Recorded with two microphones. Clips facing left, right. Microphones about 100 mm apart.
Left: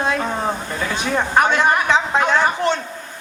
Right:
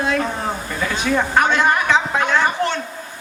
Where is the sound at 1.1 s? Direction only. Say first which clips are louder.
Left 1 dB; 15° left (ahead or behind).